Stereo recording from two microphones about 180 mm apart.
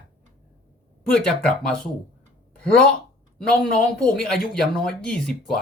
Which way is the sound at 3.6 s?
5° left (ahead or behind).